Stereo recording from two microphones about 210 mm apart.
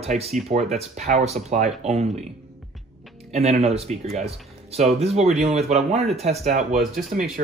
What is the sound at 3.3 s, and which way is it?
Speech, 30° right (ahead or behind).